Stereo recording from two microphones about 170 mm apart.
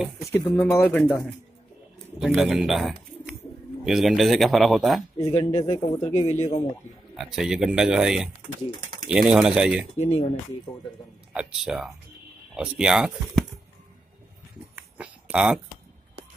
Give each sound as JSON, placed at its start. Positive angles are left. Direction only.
{"t": 0.3, "sound": "speech", "side_deg": 15}
{"t": 0.8, "sound": "a man's voice", "side_deg": 0}
{"t": 2.1, "sound": "a man's voice", "side_deg": 0}
{"t": 5.3, "sound": "a man's voice", "side_deg": 35}
{"t": 7.2, "sound": "a man's voice", "side_deg": 0}
{"t": 9.9, "sound": "a man's voice", "side_deg": 40}
{"t": 11.3, "sound": "a man's voice", "side_deg": -5}
{"t": 15.0, "sound": "a sound", "side_deg": -5}